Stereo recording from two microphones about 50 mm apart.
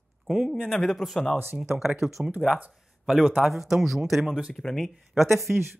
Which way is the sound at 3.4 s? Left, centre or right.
Centre.